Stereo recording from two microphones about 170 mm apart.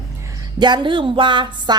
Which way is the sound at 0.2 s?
20° right (ahead or behind).